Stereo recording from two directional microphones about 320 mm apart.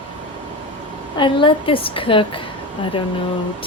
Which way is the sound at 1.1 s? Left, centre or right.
Centre.